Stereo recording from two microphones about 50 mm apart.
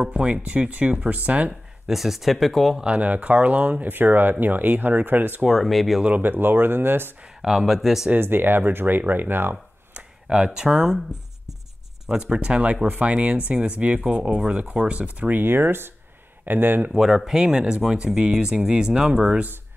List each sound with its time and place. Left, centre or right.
0.0 s speech: right
1.9 s speech: centre
2.8 s speech: right
5.5 s speech: centre
6.2 s speech: right
7.4 s speech: centre
8.1 s speech: right
10.2 s speech: centre
15.4 s speech: right
17.0 s speech: centre